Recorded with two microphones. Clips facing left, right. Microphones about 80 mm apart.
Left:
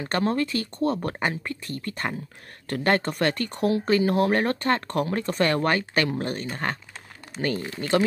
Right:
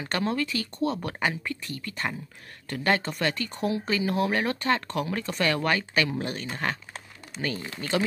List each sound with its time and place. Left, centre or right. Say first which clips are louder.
0.0 s speech: left 3 dB; left